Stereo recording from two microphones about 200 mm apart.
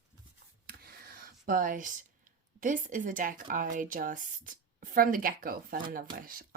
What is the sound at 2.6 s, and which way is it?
A woman's voice, 40° right (ahead or behind).